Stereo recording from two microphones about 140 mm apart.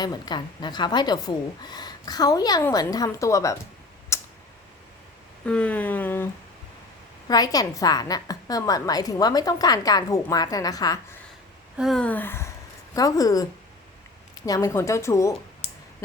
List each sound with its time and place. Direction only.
0.0 s a woman's voice: 30° left (ahead or behind)
4.1 s tick: 20° left (ahead or behind)
5.5 s speech: 10° left (ahead or behind)
7.3 s a woman's voice: 25° left (ahead or behind)
11.8 s speech: centre (ahead or behind)
12.0 s a woman's voice: 15° left (ahead or behind)